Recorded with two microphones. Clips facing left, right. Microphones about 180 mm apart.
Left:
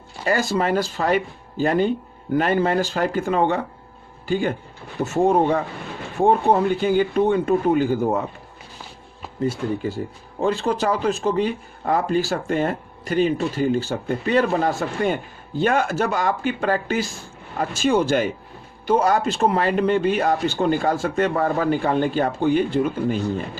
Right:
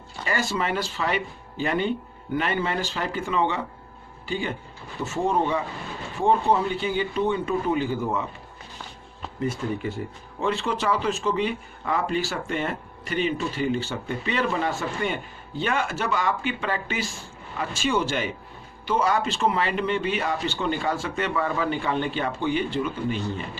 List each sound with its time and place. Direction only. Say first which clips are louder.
0.3 s speech: left 6 dB; 40° left (ahead or behind)
9.4 s speech: left 4 dB; 35° left (ahead or behind)